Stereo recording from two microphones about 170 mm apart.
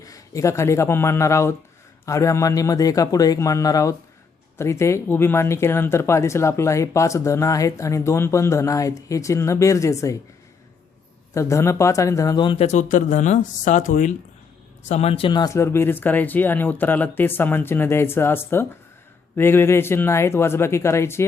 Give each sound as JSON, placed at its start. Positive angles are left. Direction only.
{"t": 0.0, "sound": "speech", "side_deg": 20}
{"t": 11.3, "sound": "speech", "side_deg": 15}
{"t": 12.6, "sound": "speech", "side_deg": 45}